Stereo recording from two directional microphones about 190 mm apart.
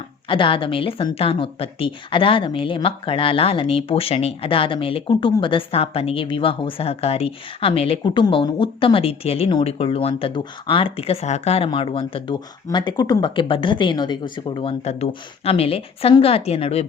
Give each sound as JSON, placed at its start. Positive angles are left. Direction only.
{"t": 0.3, "sound": "speech", "side_deg": 25}